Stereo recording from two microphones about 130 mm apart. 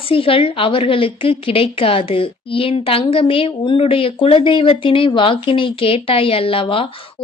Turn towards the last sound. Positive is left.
turn(degrees=45)  # may be behind; listen again after turning